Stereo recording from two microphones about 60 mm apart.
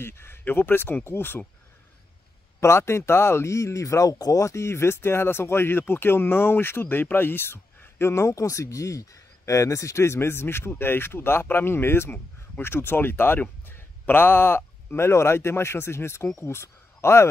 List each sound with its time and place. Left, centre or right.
0.0 s speech: left
2.6 s speech: left